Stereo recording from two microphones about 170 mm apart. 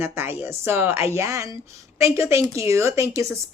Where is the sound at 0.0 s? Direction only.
15° right (ahead or behind).